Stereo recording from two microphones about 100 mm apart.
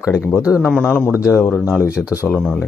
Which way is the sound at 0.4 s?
25° left (ahead or behind).